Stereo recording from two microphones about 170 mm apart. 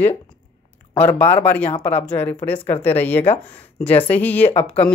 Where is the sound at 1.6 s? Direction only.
35° left (ahead or behind).